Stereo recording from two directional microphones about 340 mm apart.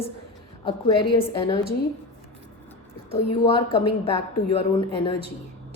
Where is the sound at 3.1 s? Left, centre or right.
Centre.